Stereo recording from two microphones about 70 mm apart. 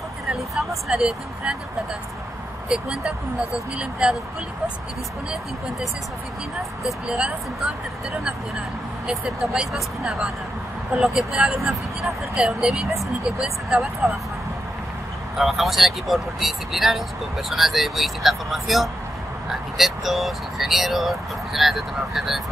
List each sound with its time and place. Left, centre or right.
0.6 s speech: centre
2.7 s speech: centre
7.1 s speech: centre
9.2 s speech: centre
15.3 s speech: centre